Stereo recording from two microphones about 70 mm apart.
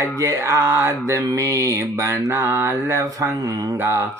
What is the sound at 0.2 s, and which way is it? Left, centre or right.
Mantra, right.